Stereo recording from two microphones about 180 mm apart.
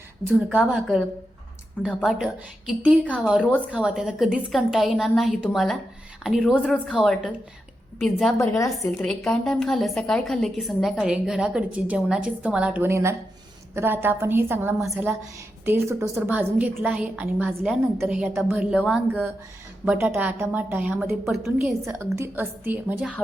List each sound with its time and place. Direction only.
0.3 s a woman's voice: 5° right (ahead or behind)
8.4 s a woman's voice: 20° left (ahead or behind)
9.0 s a woman's voice: 5° left (ahead or behind)
19.8 s a woman's voice: 10° right (ahead or behind)
21.8 s a woman's voice: 15° right (ahead or behind)